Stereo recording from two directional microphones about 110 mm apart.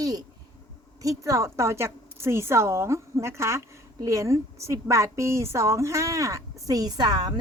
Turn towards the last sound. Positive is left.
turn(degrees=-40)  # may be behind; listen again after turning